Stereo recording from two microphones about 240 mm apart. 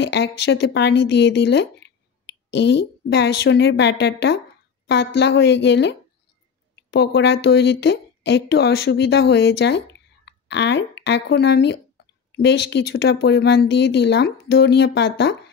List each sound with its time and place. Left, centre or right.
0.0 s speech: left